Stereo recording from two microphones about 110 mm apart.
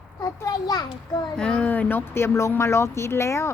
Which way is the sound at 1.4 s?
10° left (ahead or behind).